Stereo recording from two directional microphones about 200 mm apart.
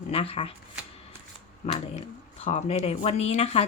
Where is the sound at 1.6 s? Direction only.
35° left (ahead or behind).